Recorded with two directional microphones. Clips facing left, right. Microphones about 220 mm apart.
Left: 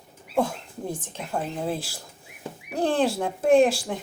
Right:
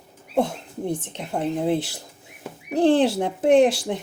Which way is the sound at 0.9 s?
70° right (ahead or behind).